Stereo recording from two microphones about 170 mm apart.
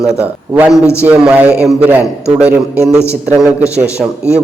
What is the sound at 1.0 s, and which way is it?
Speech, 5° right (ahead or behind).